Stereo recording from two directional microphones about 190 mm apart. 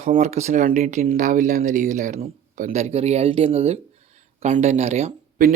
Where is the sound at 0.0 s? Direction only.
40° right (ahead or behind).